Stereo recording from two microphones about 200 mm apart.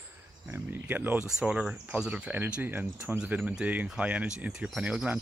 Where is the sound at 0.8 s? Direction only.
10° right (ahead or behind).